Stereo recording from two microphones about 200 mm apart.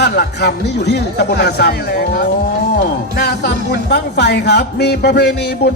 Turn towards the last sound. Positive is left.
turn(degrees=55)  # may be behind; listen again after turning